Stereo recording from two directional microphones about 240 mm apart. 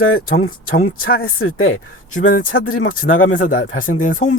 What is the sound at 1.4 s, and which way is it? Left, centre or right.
Speech, left.